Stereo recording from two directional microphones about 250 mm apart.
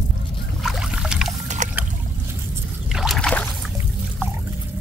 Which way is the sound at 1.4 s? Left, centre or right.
Right.